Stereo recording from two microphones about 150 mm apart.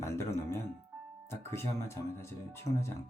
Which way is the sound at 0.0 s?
20° left (ahead or behind).